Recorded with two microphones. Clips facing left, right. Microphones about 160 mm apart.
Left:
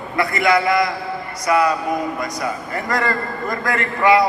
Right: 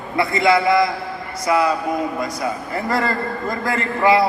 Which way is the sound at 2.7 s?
30° right (ahead or behind).